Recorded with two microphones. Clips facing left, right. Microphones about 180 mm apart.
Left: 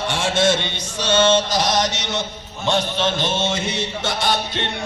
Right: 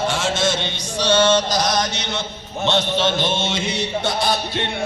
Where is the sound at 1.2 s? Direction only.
20° left (ahead or behind).